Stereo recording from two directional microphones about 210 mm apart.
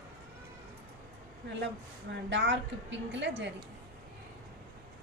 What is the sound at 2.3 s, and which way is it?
Speech, 60° right (ahead or behind).